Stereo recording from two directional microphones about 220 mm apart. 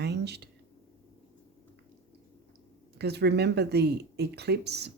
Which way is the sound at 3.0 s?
50° right (ahead or behind).